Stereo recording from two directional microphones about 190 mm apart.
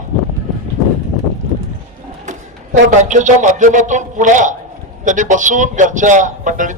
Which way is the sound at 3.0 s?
40° right (ahead or behind).